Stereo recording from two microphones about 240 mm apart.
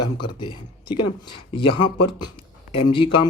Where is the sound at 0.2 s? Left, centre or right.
Centre.